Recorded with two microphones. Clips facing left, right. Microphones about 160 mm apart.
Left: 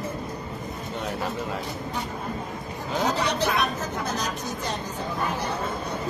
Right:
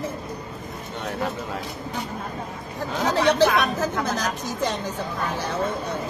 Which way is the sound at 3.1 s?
90° right.